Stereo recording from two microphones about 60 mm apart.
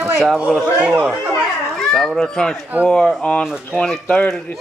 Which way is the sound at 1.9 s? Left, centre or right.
Centre.